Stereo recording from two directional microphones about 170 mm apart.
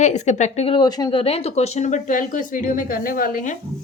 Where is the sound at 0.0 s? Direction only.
45° left (ahead or behind).